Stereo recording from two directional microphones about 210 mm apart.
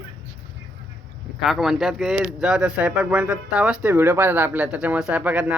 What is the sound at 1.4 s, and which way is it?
Speech, centre (ahead or behind).